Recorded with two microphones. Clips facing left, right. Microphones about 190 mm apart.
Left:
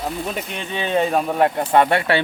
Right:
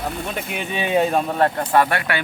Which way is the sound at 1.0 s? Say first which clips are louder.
Left 2 dB; centre (ahead or behind).